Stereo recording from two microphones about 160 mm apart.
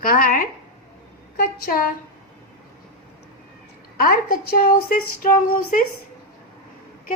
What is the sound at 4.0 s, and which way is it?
A woman's voice, 65° left (ahead or behind).